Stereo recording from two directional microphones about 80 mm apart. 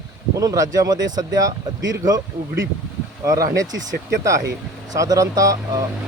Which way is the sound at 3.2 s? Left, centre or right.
Right.